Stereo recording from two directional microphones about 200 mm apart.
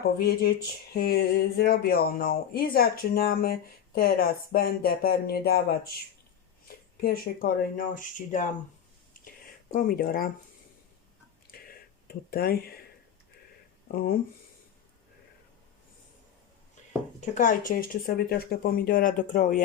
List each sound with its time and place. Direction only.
0.0 s speech: 50° left (ahead or behind)
6.9 s speech: 50° left (ahead or behind)
9.7 s speech: 45° left (ahead or behind)
11.7 s a sound: 50° left (ahead or behind)
13.9 s speech: 50° left (ahead or behind)
17.2 s speech: 40° left (ahead or behind)